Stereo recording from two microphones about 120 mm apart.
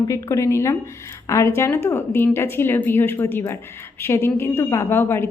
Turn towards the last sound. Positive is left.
turn(degrees=20)  # may be behind; listen again after turning